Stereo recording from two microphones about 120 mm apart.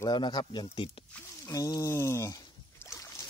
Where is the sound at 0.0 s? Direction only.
40° left (ahead or behind).